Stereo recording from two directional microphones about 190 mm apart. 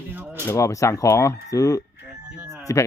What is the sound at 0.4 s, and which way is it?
Speech, 15° left (ahead or behind).